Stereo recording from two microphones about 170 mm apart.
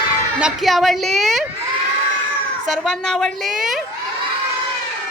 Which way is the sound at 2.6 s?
Centre (ahead or behind).